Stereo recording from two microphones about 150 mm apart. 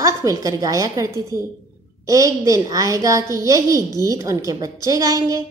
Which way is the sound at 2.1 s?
20° right (ahead or behind).